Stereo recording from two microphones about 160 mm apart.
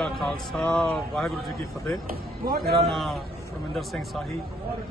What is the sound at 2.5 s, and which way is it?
Speech, 60° right (ahead or behind).